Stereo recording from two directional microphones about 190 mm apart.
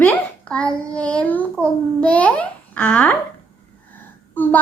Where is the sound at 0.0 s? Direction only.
5° left (ahead or behind).